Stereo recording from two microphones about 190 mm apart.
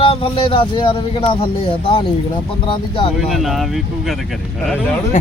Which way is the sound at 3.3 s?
Centre (ahead or behind).